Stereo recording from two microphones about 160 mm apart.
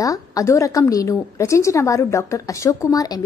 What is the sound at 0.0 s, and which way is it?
A woman's voice, 20° left (ahead or behind).